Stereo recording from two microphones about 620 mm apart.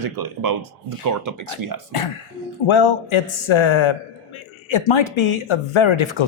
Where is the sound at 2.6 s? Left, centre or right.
Left.